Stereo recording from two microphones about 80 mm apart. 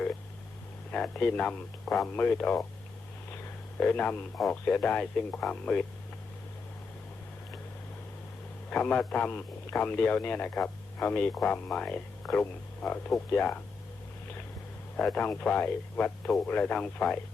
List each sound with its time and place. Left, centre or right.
0.9 s a man's voice: centre
3.8 s speech: centre
8.7 s a man's voice: centre
14.9 s a man's voice: centre